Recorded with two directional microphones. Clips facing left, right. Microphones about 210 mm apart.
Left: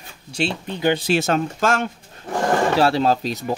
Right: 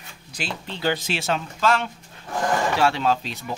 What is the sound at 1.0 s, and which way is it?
Speech, 45° left (ahead or behind).